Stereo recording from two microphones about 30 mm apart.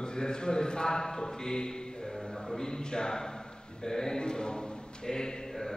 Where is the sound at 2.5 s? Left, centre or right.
Centre.